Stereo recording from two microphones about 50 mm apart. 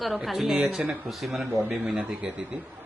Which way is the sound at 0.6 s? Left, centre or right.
Right.